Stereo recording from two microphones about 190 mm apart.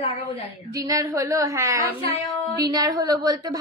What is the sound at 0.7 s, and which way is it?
A woman's voice, 20° right (ahead or behind).